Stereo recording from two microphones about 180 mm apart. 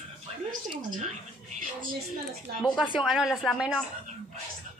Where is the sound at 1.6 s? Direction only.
50° right (ahead or behind).